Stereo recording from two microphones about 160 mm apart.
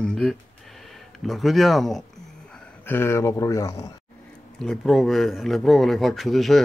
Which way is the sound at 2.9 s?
15° left (ahead or behind).